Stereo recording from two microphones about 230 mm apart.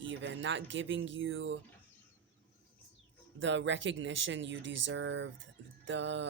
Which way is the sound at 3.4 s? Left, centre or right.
Right.